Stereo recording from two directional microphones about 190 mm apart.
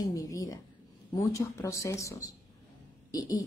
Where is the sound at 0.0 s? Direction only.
20° left (ahead or behind).